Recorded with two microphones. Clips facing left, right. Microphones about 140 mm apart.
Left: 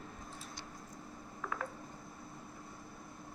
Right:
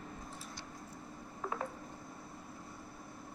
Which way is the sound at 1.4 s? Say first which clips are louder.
Right 2 dB; 30° right (ahead or behind).